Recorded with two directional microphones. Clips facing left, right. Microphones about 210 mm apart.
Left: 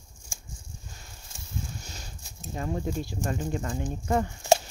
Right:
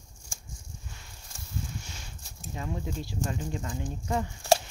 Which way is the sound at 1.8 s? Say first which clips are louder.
Left 2 dB; 40° left (ahead or behind).